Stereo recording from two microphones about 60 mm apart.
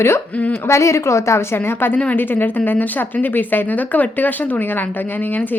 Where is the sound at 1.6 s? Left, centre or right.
Left.